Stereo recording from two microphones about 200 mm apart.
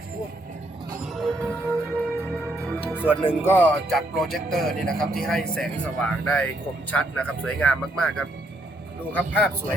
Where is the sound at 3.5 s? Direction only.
10° left (ahead or behind).